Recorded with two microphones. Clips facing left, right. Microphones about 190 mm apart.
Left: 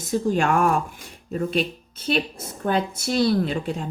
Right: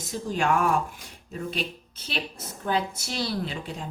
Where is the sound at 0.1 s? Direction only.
50° left (ahead or behind).